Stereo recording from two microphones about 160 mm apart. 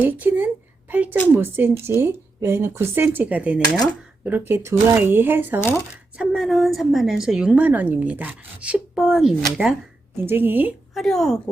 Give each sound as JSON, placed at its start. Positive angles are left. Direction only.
{"t": 0.0, "sound": "a sound", "side_deg": -10}
{"t": 1.3, "sound": "speech", "side_deg": -15}
{"t": 5.5, "sound": "speech", "side_deg": 15}
{"t": 6.1, "sound": "a woman's voice", "side_deg": 0}
{"t": 10.2, "sound": "speech", "side_deg": -15}
{"t": 10.9, "sound": "a woman's voice", "side_deg": 0}